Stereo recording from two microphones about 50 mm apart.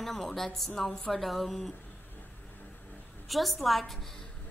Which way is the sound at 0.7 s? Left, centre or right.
Centre.